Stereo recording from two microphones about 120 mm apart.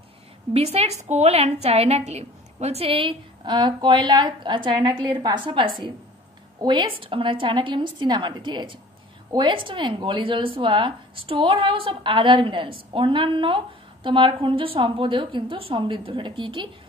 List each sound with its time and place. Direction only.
0.5 s a woman's voice: 60° right (ahead or behind); by 16.6 s 45° right (ahead or behind)